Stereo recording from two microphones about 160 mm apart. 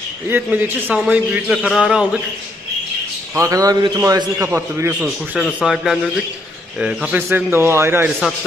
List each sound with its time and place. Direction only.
0.3 s a man's voice: 10° right (ahead or behind)
3.3 s a man's voice: 20° right (ahead or behind)